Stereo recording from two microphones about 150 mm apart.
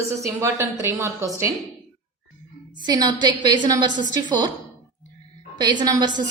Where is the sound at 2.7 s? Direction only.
30° right (ahead or behind).